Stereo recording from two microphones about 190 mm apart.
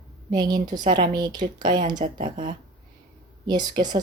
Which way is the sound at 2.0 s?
40° right (ahead or behind).